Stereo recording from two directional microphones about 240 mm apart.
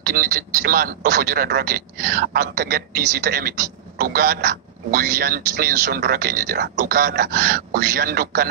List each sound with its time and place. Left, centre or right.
0.0 s a man's voice: right